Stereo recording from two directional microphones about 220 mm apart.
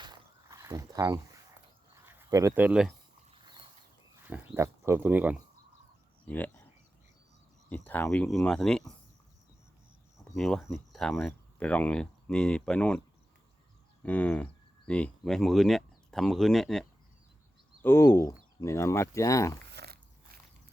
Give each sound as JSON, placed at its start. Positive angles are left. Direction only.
{"t": 0.0, "sound": "a sound", "side_deg": -15}
{"t": 2.1, "sound": "speech", "side_deg": -10}
{"t": 3.3, "sound": "horse", "side_deg": -20}
{"t": 4.2, "sound": "speech", "side_deg": -10}
{"t": 6.2, "sound": "speech", "side_deg": 5}
{"t": 7.7, "sound": "speech", "side_deg": 10}
{"t": 10.2, "sound": "speech", "side_deg": 0}
{"t": 14.0, "sound": "speech", "side_deg": 5}
{"t": 17.8, "sound": "speech", "side_deg": 10}
{"t": 19.7, "sound": "biting", "side_deg": -45}